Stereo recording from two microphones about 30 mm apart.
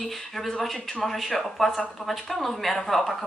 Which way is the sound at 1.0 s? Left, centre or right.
Centre.